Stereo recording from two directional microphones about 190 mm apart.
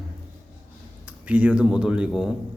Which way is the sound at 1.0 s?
5° right (ahead or behind).